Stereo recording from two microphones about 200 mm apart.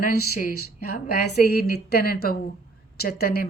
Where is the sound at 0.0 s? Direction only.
45° left (ahead or behind).